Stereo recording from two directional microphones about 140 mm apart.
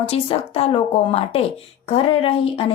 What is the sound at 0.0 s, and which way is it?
A woman's voice, 45° left (ahead or behind).